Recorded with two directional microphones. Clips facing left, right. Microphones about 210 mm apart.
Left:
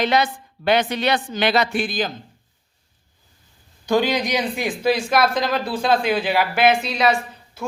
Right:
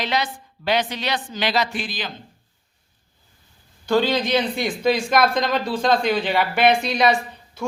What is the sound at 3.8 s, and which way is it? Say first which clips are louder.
Speech: even; 15° left (ahead or behind).